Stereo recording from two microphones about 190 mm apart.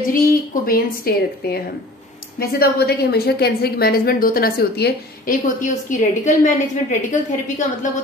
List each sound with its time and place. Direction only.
0.1 s a woman's voice: 50° left (ahead or behind)
5.6 s a woman's voice: 40° left (ahead or behind)